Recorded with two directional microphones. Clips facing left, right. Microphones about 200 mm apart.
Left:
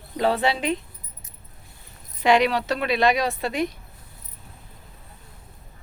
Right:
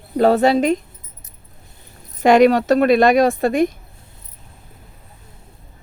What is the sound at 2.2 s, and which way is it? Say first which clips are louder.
A woman's voice: right 8 dB; 45° right (ahead or behind).